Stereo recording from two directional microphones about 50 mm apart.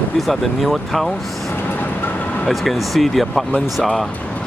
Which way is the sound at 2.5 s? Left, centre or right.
Centre.